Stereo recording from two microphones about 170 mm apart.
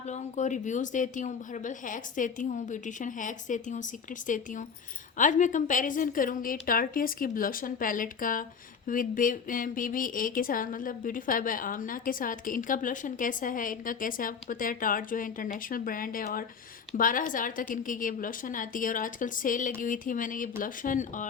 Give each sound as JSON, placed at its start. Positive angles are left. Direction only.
{"t": 0.1, "sound": "a woman's voice", "side_deg": 45}
{"t": 5.1, "sound": "a woman's voice", "side_deg": 50}